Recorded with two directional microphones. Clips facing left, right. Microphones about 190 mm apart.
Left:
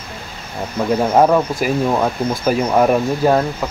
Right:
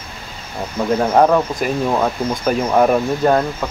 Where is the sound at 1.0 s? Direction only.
5° left (ahead or behind).